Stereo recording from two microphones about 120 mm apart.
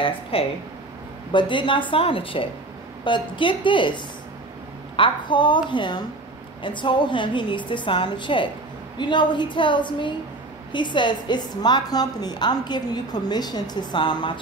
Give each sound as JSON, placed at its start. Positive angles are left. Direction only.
{"t": 0.0, "sound": "a woman's voice", "side_deg": 50}
{"t": 1.3, "sound": "a woman's voice", "side_deg": 40}